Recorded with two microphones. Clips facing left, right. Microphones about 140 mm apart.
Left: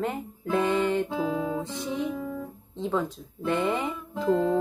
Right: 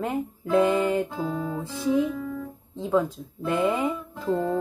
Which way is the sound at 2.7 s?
Centre (ahead or behind).